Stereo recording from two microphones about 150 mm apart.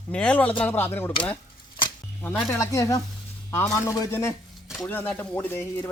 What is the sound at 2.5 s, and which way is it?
Speech, 20° left (ahead or behind).